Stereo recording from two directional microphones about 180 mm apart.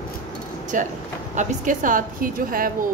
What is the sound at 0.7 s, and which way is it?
Speech, 45° right (ahead or behind).